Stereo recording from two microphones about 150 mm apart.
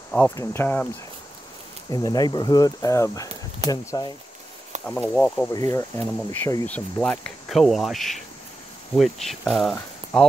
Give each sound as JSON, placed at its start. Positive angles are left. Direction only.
{"t": 0.4, "sound": "speech", "side_deg": 15}
{"t": 1.9, "sound": "speech", "side_deg": 25}
{"t": 4.8, "sound": "speech", "side_deg": 10}
{"t": 5.5, "sound": "speech", "side_deg": 20}